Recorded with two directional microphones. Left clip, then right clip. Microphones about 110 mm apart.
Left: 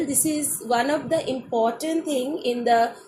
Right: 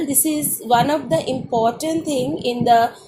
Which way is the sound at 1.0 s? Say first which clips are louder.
Right 4 dB; 60° right (ahead or behind).